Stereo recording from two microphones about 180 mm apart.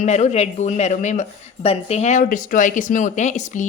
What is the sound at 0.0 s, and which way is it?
Speech, 40° left (ahead or behind).